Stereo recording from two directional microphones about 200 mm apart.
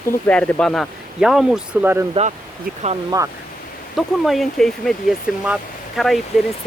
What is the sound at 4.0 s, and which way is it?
Speech, centre (ahead or behind).